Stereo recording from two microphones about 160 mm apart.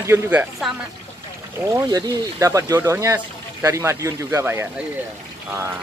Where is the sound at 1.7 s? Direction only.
20° right (ahead or behind).